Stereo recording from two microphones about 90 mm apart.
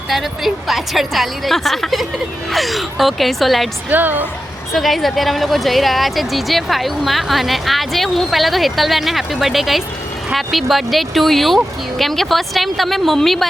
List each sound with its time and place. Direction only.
0.1 s speech: centre (ahead or behind)
3.8 s a woman's voice: 20° right (ahead or behind)
4.7 s speech: centre (ahead or behind)